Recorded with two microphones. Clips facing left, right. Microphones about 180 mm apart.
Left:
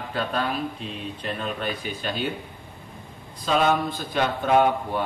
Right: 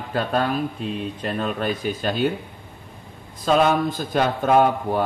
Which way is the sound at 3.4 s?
45° right (ahead or behind).